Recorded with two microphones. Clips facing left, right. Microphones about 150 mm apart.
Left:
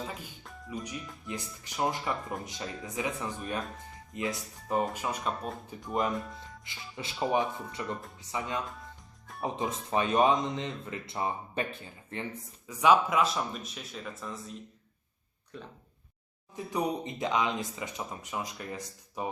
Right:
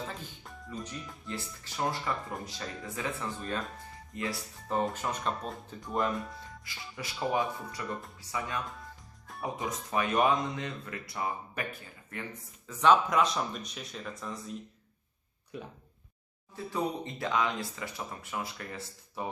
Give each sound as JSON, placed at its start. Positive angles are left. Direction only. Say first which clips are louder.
{"t": 0.7, "sound": "speech", "louder": "left 2 dB", "side_deg": 10}
{"t": 4.8, "sound": "speech", "louder": "right 1 dB", "side_deg": 10}
{"t": 5.9, "sound": "speech", "louder": "left 1 dB", "side_deg": 20}
{"t": 6.1, "sound": "speech", "louder": "left 1 dB", "side_deg": 0}
{"t": 6.7, "sound": "speech", "louder": "left 1 dB", "side_deg": 20}
{"t": 12.6, "sound": "speech", "louder": "even", "side_deg": 10}
{"t": 15.5, "sound": "speech", "louder": "right 3 dB", "side_deg": -10}
{"t": 16.6, "sound": "speech", "louder": "left 2 dB", "side_deg": 15}